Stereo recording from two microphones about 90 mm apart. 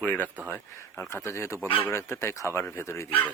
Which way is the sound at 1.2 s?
30° left (ahead or behind).